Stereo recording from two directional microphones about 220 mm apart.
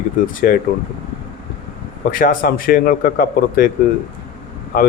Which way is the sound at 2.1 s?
40° left (ahead or behind).